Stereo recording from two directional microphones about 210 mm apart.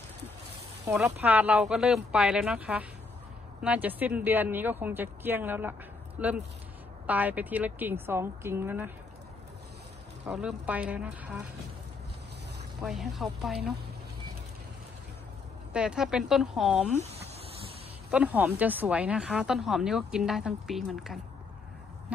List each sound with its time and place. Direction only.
0.8 s a woman's voice: 5° right (ahead or behind)
10.2 s a woman's voice: 5° right (ahead or behind)
12.8 s a woman's voice: centre (ahead or behind)
15.7 s a woman's voice: 5° right (ahead or behind)
16.9 s speech: 30° right (ahead or behind)
18.1 s a woman's voice: 5° right (ahead or behind)